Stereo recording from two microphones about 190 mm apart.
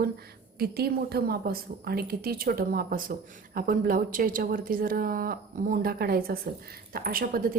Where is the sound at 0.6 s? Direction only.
55° right (ahead or behind).